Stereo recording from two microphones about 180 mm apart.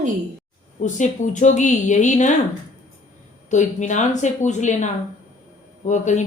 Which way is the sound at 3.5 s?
40° left (ahead or behind).